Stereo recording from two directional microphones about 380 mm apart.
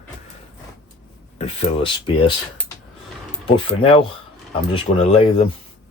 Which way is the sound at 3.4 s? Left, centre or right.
Centre.